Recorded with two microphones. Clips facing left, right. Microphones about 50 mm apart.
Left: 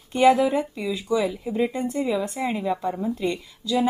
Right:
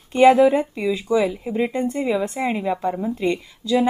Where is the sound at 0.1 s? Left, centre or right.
Right.